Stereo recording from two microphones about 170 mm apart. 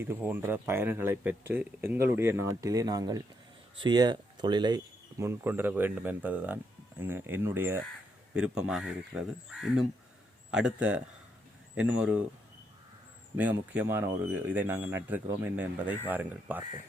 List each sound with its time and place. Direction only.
0.0 s speech: 15° right (ahead or behind)
13.3 s speech: 10° right (ahead or behind)